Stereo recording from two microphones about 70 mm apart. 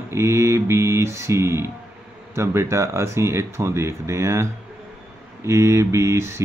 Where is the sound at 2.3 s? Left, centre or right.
Right.